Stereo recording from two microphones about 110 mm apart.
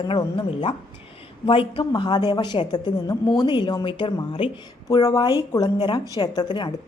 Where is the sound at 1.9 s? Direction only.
40° left (ahead or behind).